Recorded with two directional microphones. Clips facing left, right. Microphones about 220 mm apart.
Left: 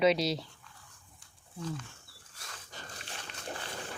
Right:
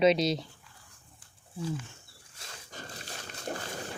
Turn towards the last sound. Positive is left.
turn(degrees=-40)  # may be behind; listen again after turning